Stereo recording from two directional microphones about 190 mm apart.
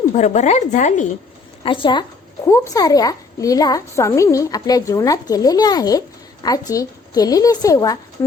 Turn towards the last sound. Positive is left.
turn(degrees=20)  # may be behind; listen again after turning